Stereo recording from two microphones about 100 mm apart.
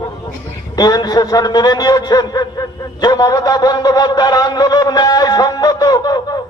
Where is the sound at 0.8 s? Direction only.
40° left (ahead or behind).